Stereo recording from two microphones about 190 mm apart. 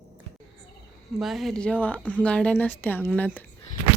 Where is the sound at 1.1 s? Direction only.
Centre (ahead or behind).